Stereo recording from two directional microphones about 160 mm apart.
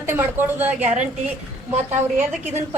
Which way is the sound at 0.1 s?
15° right (ahead or behind).